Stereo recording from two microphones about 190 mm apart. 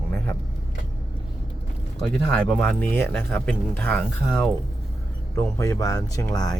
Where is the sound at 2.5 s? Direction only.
5° left (ahead or behind).